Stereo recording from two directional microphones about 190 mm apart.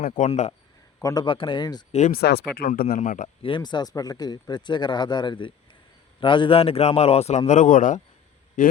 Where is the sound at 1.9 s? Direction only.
40° left (ahead or behind).